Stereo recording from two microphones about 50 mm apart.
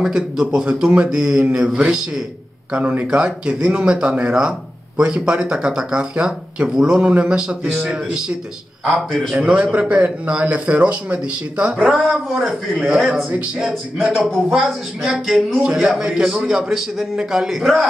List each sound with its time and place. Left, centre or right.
0.0 s speech: centre
2.7 s speech: right
9.3 s speech: centre
9.6 s speech: right
11.7 s a man's voice: centre